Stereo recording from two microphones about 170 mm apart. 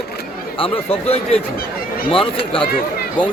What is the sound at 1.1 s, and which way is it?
A man's voice, 35° left (ahead or behind).